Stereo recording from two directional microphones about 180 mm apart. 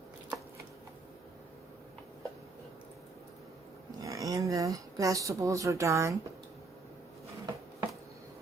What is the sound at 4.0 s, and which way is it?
Speech, 20° right (ahead or behind).